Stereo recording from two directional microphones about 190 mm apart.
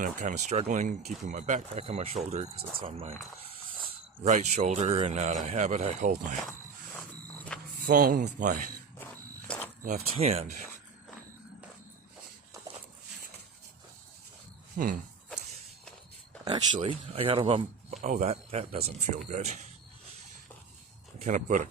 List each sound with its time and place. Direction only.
0.0 s speech: 40° right (ahead or behind)
4.2 s speech: 35° right (ahead or behind)
7.3 s vehicle: 5° left (ahead or behind)
7.8 s speech: 45° right (ahead or behind)
9.5 s a sound: 5° left (ahead or behind)
9.8 s speech: 35° right (ahead or behind)
16.4 s speech: 25° right (ahead or behind)
21.2 s speech: 40° right (ahead or behind)